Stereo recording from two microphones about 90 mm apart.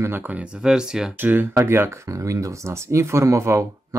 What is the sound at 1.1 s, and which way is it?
Speech, 20° right (ahead or behind).